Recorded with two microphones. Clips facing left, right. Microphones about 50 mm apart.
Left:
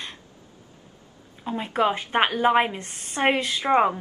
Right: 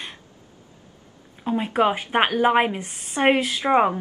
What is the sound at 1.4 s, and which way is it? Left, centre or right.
A woman's voice, centre.